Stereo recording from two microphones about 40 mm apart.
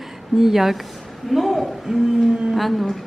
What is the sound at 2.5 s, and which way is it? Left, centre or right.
Speech, centre.